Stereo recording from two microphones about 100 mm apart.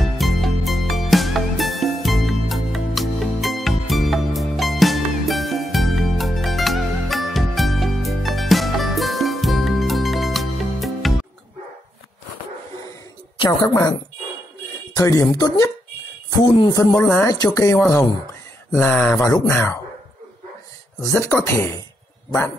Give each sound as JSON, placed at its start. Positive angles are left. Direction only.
{"t": 0.0, "sound": "music", "side_deg": 0}
{"t": 13.4, "sound": "a woman's voice", "side_deg": 40}
{"t": 15.0, "sound": "speech", "side_deg": 35}
{"t": 17.0, "sound": "speech", "side_deg": 20}
{"t": 17.3, "sound": "speech", "side_deg": 40}
{"t": 18.8, "sound": "speech", "side_deg": 10}
{"t": 19.1, "sound": "speech", "side_deg": 35}
{"t": 19.5, "sound": "speech", "side_deg": 20}
{"t": 21.0, "sound": "speech", "side_deg": 30}